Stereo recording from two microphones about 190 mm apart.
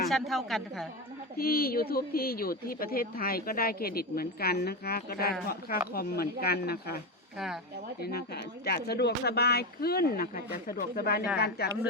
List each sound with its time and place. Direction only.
0.1 s a woman's voice: centre (ahead or behind)
1.4 s a woman's voice: 50° left (ahead or behind)
7.3 s a woman's voice: centre (ahead or behind)
8.6 s speech: 60° left (ahead or behind)